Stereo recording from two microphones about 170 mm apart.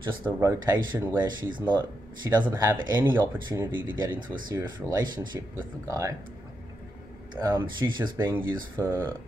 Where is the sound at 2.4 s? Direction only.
25° right (ahead or behind).